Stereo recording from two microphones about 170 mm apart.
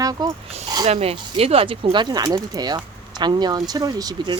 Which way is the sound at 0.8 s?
40° right (ahead or behind).